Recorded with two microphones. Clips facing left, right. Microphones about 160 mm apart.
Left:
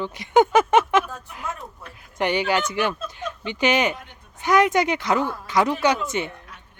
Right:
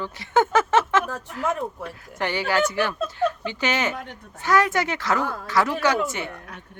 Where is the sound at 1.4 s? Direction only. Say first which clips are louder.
Right 8 dB; 90° right.